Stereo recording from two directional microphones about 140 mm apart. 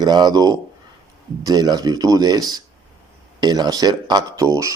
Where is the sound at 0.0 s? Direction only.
30° right (ahead or behind).